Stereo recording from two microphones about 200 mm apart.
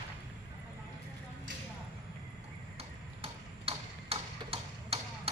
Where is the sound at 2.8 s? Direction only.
30° right (ahead or behind).